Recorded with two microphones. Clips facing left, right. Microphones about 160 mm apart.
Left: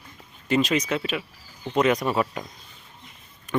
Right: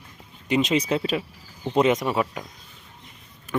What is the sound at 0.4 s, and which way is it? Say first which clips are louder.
Speech: right 1 dB; 20° right (ahead or behind).